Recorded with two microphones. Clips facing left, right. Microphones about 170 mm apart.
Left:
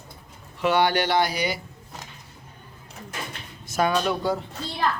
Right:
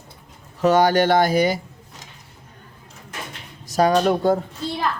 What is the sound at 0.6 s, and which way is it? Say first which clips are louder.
Speech: right 5 dB; 40° right (ahead or behind).